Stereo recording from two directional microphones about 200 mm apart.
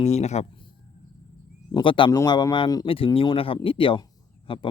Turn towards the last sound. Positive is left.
turn(degrees=25)  # may be behind; listen again after turning